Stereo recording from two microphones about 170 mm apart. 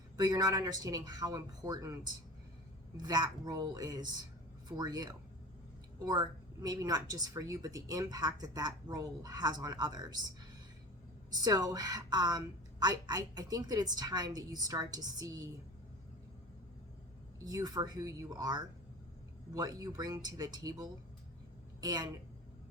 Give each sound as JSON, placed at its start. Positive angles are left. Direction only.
{"t": 0.2, "sound": "a woman's voice", "side_deg": -25}
{"t": 3.0, "sound": "a woman's voice", "side_deg": -25}
{"t": 6.1, "sound": "a woman's voice", "side_deg": -20}
{"t": 11.3, "sound": "a woman's voice", "side_deg": -25}
{"t": 17.4, "sound": "a woman's voice", "side_deg": -20}